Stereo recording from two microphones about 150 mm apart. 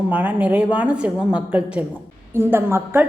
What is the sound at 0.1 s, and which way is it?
A woman's voice, 10° right (ahead or behind).